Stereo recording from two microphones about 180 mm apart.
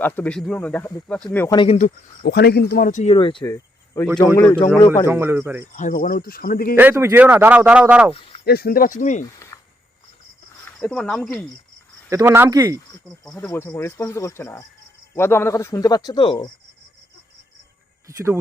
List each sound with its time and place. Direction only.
0.0 s speech: 10° left (ahead or behind)
1.5 s speech: 30° left (ahead or behind)
2.2 s speech: 65° left (ahead or behind)
3.0 s speech: 30° left (ahead or behind)
3.5 s cricket: 15° left (ahead or behind)
4.4 s speech: 10° left (ahead or behind)
5.0 s speech: 15° right (ahead or behind)
5.7 s speech: 50° left (ahead or behind)
6.7 s speech: 10° right (ahead or behind)
8.4 s speech: 55° left (ahead or behind)
9.2 s a sound: 15° left (ahead or behind)
10.7 s speech: 5° left (ahead or behind)
12.0 s speech: 15° right (ahead or behind)
13.1 s speech: 5° left (ahead or behind); by 16.5 s 30° left (ahead or behind)